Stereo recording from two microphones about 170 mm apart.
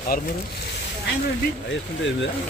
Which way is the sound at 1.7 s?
90° left.